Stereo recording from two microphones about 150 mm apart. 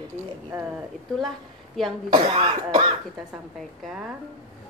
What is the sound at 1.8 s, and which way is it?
Speech, centre (ahead or behind).